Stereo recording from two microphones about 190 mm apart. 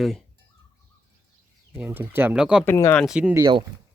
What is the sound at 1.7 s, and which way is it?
Speech, 10° right (ahead or behind).